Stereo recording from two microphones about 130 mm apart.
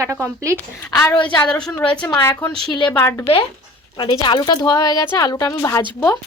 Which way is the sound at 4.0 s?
35° left (ahead or behind).